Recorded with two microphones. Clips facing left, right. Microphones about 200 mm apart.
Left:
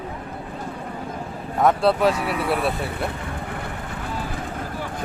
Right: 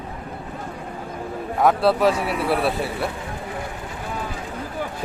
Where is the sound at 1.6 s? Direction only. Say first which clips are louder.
Even; centre (ahead or behind).